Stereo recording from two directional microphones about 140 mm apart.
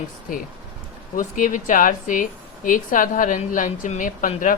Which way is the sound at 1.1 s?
70° left (ahead or behind).